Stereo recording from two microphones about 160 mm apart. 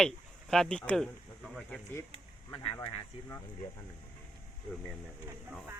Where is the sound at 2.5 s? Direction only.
40° left (ahead or behind).